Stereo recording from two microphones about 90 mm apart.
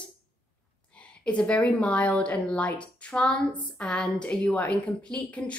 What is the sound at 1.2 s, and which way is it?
Speech, 10° left (ahead or behind).